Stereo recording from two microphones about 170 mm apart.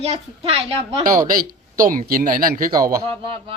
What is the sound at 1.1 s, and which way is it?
A man's voice, 55° right (ahead or behind).